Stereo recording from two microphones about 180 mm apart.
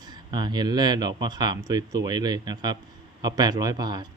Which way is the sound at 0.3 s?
25° right (ahead or behind).